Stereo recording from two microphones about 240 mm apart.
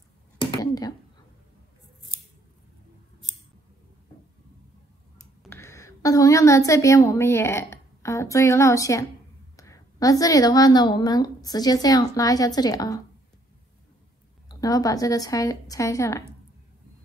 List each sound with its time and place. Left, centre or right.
0.4 s a sound: centre
5.4 s a woman's voice: centre
14.5 s a woman's voice: centre